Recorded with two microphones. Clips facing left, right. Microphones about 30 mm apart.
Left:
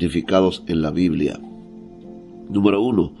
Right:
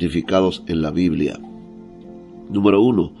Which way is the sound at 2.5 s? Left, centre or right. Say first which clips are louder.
Right 3 dB; right.